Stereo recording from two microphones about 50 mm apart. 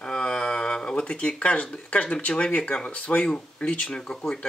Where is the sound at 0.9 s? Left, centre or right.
Left.